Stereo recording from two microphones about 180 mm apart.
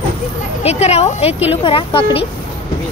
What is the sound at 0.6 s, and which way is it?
Speech, 35° left (ahead or behind).